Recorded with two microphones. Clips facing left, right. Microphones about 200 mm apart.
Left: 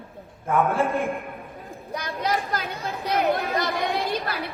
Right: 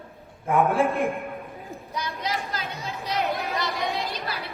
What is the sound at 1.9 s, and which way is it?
A woman's voice, 50° left (ahead or behind).